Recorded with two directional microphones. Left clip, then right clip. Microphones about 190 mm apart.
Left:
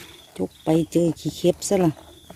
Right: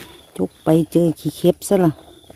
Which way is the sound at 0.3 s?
30° right (ahead or behind).